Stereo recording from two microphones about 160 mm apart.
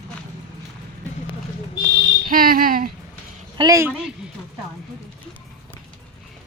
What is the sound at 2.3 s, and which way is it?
Speech, 65° right (ahead or behind).